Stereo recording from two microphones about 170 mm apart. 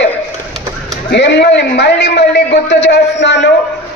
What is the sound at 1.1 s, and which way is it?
A man's voice, 90° left.